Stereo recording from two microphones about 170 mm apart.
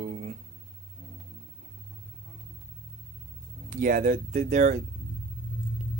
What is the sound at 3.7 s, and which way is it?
Speech, 55° right (ahead or behind).